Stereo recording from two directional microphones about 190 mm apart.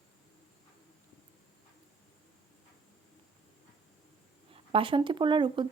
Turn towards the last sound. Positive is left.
turn(degrees=-25)  # may be behind; listen again after turning